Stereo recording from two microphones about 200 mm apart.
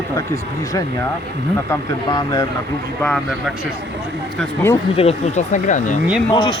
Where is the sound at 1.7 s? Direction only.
20° left (ahead or behind).